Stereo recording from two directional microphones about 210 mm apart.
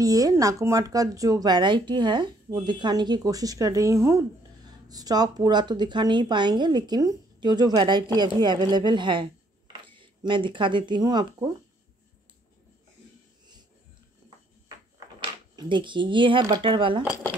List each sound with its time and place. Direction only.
0.0 s speech: 15° right (ahead or behind)
15.1 s speech: 20° right (ahead or behind)